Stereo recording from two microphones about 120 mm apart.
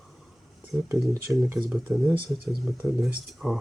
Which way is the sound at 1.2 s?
20° right (ahead or behind).